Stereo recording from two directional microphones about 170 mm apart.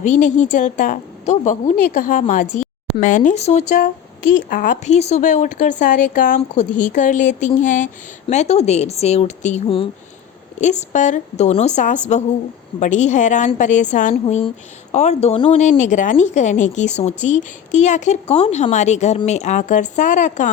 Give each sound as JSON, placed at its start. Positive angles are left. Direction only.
{"t": 0.0, "sound": "speech", "side_deg": 45}
{"t": 4.4, "sound": "a woman's voice", "side_deg": 55}